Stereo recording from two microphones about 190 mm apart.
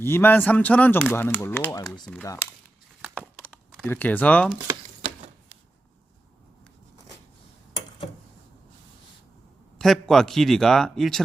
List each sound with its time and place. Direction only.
0.0 s a man's voice: 10° left (ahead or behind)
3.2 s a sound: 5° left (ahead or behind)
3.8 s speech: 10° left (ahead or behind)
9.7 s a man's voice: centre (ahead or behind)